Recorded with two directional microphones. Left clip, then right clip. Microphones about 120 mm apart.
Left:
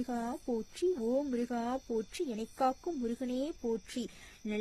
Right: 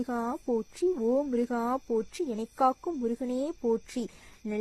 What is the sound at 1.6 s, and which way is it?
Speech, centre (ahead or behind).